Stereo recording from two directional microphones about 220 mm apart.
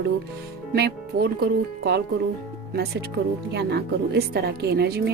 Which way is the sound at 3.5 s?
50° right (ahead or behind).